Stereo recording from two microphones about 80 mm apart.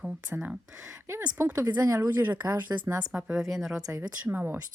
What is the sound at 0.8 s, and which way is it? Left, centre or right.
Speech, right.